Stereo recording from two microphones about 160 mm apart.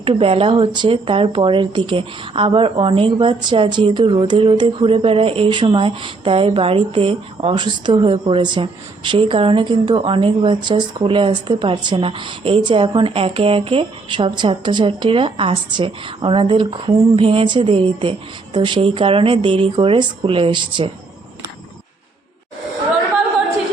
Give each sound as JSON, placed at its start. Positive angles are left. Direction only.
{"t": 0.0, "sound": "speech", "side_deg": -35}